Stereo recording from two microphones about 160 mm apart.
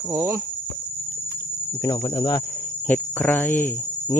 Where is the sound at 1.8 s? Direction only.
25° left (ahead or behind).